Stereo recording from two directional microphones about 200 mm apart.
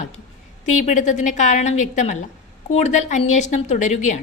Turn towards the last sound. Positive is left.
turn(degrees=35)  # may be behind; listen again after turning